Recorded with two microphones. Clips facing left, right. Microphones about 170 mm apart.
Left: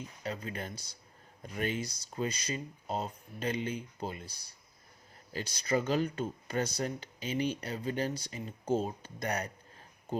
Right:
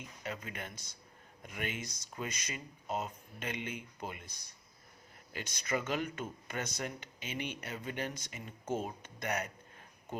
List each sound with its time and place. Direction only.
0.2 s speech: 35° left (ahead or behind)